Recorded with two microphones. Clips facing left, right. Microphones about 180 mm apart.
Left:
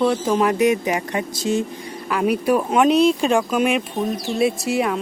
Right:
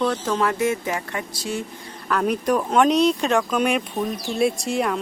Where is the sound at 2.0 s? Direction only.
10° left (ahead or behind).